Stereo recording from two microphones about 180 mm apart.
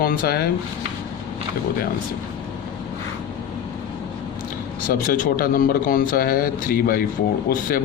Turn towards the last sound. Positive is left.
turn(degrees=50)  # may be behind; listen again after turning